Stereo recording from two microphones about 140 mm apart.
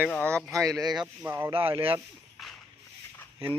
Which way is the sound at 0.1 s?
5° left (ahead or behind).